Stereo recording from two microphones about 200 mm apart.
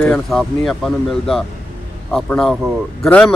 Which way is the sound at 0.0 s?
5° left (ahead or behind).